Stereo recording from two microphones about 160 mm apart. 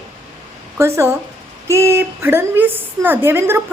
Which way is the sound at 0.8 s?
15° right (ahead or behind).